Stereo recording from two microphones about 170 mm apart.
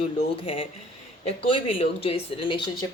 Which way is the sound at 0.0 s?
35° left (ahead or behind).